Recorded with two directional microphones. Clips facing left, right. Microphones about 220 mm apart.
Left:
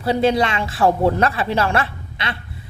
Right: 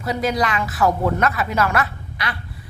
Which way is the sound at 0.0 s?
30° left (ahead or behind).